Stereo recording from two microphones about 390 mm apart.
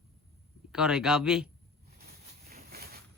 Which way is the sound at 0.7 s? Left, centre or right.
Centre.